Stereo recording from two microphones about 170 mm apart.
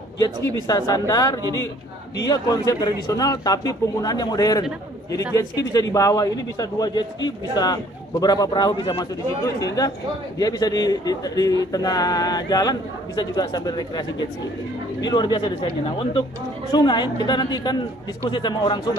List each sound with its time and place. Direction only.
0.7 s a man's voice: 20° left (ahead or behind)
15.0 s a man's voice: 25° left (ahead or behind)